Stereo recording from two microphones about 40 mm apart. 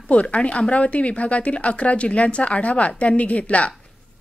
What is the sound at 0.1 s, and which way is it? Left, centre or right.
Speech, left.